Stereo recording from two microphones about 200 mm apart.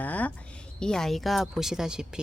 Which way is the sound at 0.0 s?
10° left (ahead or behind).